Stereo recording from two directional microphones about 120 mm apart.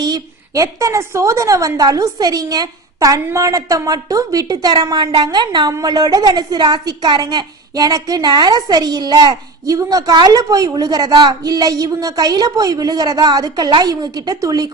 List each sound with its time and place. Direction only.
0.0 s a woman's voice: 30° right (ahead or behind)